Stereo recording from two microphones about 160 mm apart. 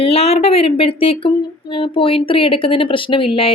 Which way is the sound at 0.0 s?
40° left (ahead or behind).